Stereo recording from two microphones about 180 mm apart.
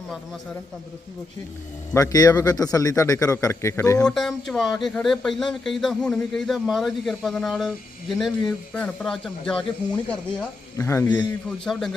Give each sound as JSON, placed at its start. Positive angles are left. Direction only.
{"t": 1.9, "sound": "a man's voice", "side_deg": 20}
{"t": 4.0, "sound": "a man's voice", "side_deg": 5}
{"t": 11.6, "sound": "speech", "side_deg": 5}